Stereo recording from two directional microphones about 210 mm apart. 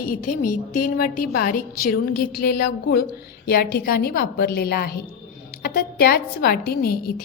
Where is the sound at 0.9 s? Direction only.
40° left (ahead or behind).